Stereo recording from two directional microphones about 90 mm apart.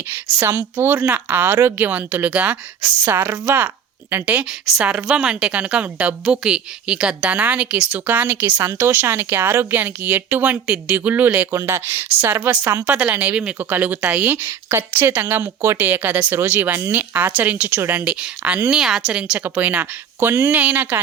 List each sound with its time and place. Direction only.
0.1 s a woman's voice: 25° right (ahead or behind)
3.0 s a woman's voice: 25° right (ahead or behind)
18.0 s a woman's voice: 10° right (ahead or behind)
19.5 s a woman's voice: 20° right (ahead or behind)